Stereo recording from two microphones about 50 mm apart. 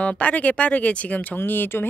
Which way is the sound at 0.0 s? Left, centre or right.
Left.